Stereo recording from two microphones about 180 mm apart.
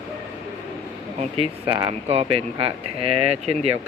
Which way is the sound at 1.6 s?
30° right (ahead or behind).